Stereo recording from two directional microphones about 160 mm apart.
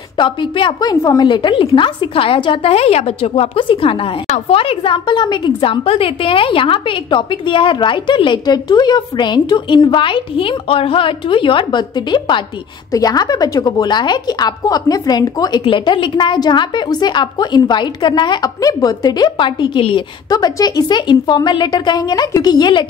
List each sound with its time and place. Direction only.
0.2 s a woman's voice: 30° left (ahead or behind)